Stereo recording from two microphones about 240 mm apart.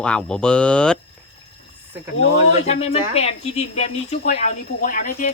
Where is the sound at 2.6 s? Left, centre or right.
Left.